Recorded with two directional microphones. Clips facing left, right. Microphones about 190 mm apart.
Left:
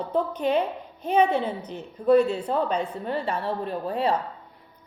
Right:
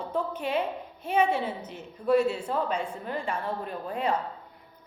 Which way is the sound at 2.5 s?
35° left (ahead or behind).